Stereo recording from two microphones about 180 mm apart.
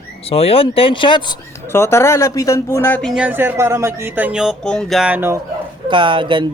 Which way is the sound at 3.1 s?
10° right (ahead or behind).